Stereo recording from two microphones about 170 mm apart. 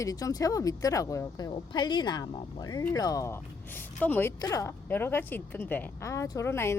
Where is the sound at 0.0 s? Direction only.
20° left (ahead or behind).